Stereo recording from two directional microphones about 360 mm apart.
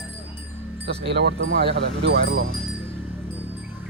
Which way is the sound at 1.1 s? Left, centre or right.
Right.